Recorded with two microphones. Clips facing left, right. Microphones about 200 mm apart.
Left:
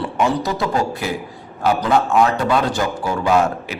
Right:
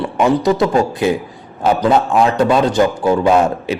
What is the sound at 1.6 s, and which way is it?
A man's voice, 25° right (ahead or behind).